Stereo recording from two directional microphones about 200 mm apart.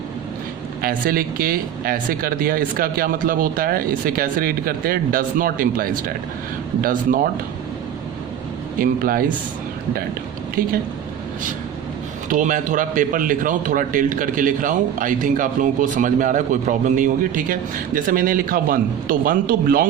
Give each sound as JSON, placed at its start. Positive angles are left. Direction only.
{"t": 0.8, "sound": "speech", "side_deg": -45}
{"t": 8.8, "sound": "speech", "side_deg": -45}
{"t": 10.6, "sound": "speech", "side_deg": -45}
{"t": 12.3, "sound": "a man's voice", "side_deg": -40}